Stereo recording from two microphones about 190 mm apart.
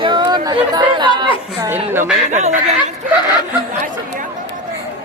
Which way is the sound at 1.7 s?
10° right (ahead or behind).